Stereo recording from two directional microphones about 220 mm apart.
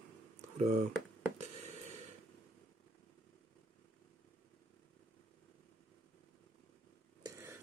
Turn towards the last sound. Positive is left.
turn(degrees=-10)  # may be behind; listen again after turning